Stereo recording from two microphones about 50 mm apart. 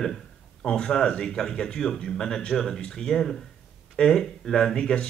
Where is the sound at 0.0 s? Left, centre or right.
Centre.